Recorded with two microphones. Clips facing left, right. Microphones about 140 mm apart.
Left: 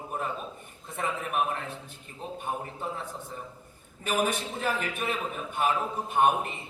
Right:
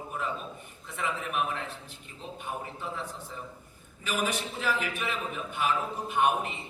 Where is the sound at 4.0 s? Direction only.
50° left (ahead or behind).